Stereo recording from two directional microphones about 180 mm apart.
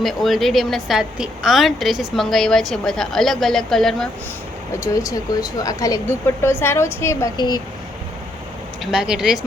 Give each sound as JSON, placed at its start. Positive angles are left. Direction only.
{"t": 0.0, "sound": "a woman's voice", "side_deg": 0}
{"t": 4.8, "sound": "speech", "side_deg": 20}
{"t": 8.8, "sound": "a woman's voice", "side_deg": -5}